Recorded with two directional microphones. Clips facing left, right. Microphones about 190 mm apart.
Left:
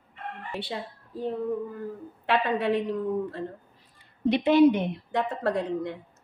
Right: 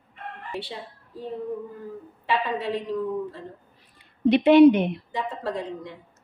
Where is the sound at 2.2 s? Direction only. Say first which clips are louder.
Left 2 dB; 55° left (ahead or behind).